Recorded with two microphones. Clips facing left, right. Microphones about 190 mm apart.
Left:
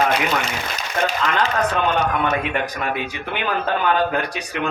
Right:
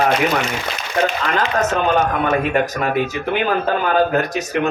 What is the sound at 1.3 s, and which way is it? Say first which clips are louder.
Speech: right 2 dB; 45° right (ahead or behind).